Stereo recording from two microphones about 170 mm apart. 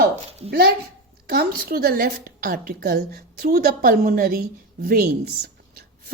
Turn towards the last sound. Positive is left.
turn(degrees=-60)  # may be behind; listen again after turning